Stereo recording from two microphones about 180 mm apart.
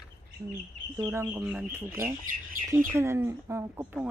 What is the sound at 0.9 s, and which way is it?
A woman's voice, 15° right (ahead or behind).